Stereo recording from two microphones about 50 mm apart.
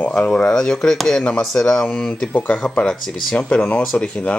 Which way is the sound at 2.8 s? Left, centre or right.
Centre.